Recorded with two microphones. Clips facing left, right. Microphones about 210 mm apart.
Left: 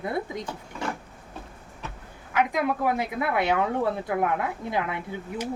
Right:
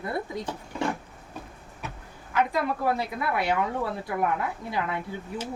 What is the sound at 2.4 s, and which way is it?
A woman's voice, 15° left (ahead or behind).